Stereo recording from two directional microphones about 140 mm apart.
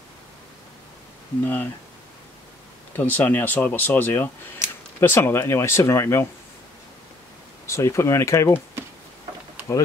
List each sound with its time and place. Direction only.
1.4 s speech: 10° left (ahead or behind)
3.0 s speech: 15° left (ahead or behind)
7.6 s speech: 20° left (ahead or behind)